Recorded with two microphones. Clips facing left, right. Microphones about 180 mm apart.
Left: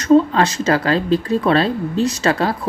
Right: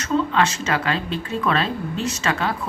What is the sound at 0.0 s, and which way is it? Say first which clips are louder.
A woman's voice: left 7 dB; 35° left (ahead or behind).